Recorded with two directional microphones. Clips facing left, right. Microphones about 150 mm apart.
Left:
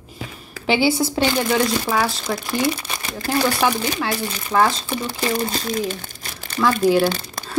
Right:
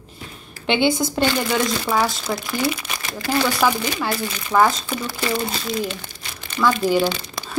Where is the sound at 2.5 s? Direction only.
30° left (ahead or behind).